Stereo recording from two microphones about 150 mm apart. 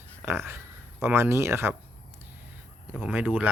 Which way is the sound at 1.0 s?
15° right (ahead or behind).